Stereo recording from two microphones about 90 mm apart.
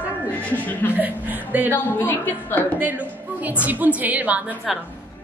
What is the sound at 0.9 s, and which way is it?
Speech, 20° right (ahead or behind).